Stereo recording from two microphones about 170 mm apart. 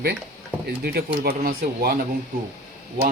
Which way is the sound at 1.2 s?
60° right (ahead or behind).